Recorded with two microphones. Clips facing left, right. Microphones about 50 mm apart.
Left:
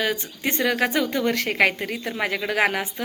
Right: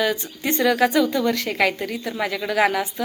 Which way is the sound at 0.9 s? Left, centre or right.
Left.